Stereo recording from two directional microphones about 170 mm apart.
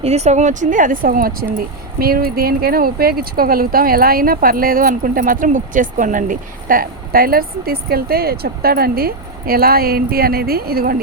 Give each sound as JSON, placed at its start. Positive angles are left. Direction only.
{"t": 0.0, "sound": "speech", "side_deg": -40}